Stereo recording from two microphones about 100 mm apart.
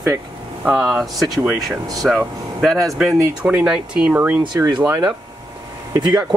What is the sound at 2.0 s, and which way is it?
Speech, centre (ahead or behind).